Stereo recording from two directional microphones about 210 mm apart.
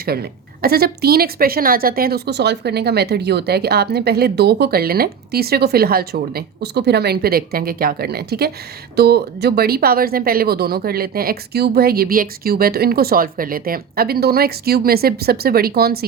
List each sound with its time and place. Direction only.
0.0 s a woman's voice: 45° right (ahead or behind)